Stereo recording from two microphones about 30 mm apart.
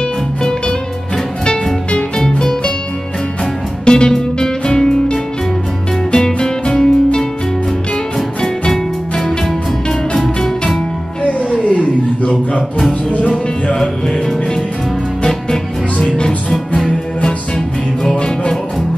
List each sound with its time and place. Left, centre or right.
0.4 s music: left
3.8 s music: left
6.7 s music: left
11.6 s chuckle: left
16.0 s music: left